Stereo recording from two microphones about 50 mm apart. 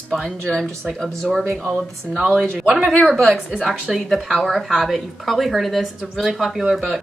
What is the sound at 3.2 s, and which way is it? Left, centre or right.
Speech, centre.